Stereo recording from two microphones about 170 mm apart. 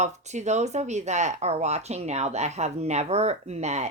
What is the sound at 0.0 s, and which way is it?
A woman's voice, 45° right (ahead or behind).